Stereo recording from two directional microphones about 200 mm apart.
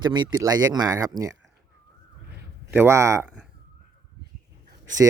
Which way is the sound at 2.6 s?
10° right (ahead or behind).